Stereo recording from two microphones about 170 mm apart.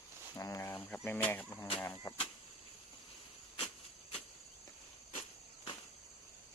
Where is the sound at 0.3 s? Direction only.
20° left (ahead or behind).